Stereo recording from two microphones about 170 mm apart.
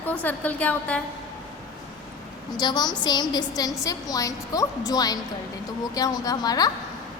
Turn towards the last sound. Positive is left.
turn(degrees=20)  # may be behind; listen again after turning